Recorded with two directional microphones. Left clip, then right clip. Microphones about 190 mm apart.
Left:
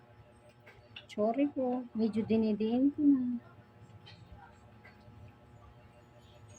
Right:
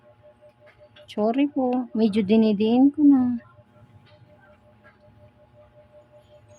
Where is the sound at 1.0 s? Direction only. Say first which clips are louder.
Right 8 dB; 65° right (ahead or behind).